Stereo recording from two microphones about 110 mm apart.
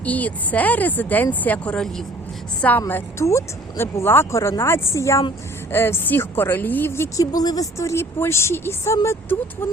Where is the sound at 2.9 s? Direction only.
25° left (ahead or behind).